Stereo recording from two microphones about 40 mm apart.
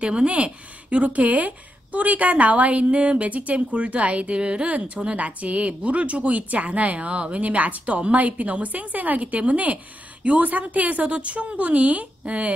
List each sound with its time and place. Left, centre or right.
0.0 s a woman's voice: right